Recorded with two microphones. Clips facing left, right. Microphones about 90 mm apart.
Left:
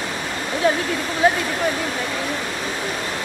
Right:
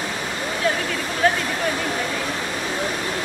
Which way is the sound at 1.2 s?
10° left (ahead or behind).